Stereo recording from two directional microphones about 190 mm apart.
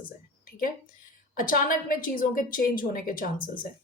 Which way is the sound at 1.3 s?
45° left (ahead or behind).